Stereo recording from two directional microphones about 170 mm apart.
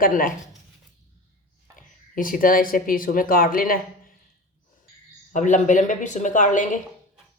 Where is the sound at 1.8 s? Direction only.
55° left (ahead or behind).